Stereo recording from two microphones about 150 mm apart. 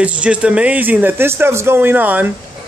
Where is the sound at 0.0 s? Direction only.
10° right (ahead or behind).